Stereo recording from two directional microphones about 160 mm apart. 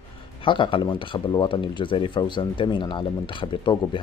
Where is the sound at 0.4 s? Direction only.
30° left (ahead or behind).